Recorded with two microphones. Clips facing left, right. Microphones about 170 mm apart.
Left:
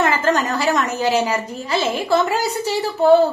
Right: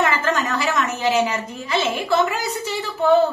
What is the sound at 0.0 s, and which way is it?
A woman's voice, 35° left (ahead or behind).